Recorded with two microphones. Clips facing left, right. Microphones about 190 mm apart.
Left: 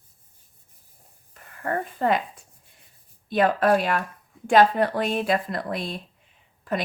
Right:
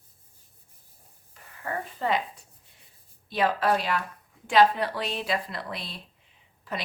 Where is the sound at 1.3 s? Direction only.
55° left (ahead or behind).